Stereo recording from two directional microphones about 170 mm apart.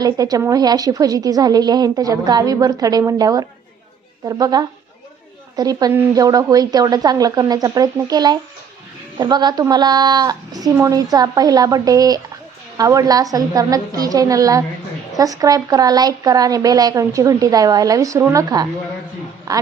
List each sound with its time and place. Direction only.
0.0 s speech: 20° right (ahead or behind)